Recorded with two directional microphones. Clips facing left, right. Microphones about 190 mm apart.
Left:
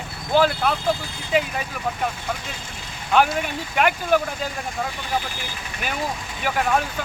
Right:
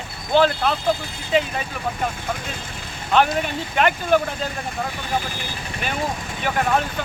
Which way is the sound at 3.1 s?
10° left (ahead or behind).